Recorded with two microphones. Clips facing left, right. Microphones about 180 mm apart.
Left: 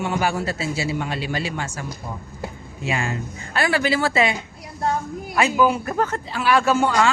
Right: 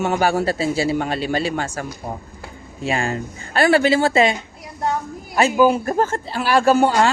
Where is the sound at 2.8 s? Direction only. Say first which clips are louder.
Right 3 dB; 35° right (ahead or behind).